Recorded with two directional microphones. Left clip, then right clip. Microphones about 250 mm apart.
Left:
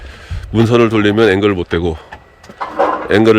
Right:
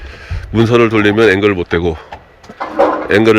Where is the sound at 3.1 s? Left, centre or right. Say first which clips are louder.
Left 1 dB; centre.